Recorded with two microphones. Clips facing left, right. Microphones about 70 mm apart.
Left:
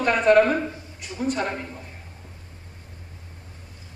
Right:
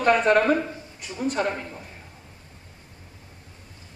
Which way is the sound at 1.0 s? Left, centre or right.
Left.